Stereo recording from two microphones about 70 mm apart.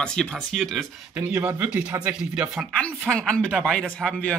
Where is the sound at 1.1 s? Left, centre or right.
Right.